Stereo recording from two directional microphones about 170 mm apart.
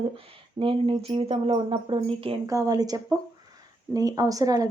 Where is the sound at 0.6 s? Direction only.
30° right (ahead or behind).